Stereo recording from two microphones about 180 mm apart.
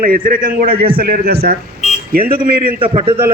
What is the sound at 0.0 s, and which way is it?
A man's voice, 50° right (ahead or behind).